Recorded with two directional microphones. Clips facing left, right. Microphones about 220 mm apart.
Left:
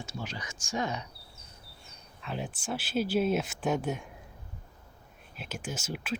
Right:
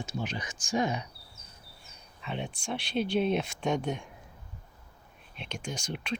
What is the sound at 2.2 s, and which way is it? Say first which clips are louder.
Speech: even; centre (ahead or behind).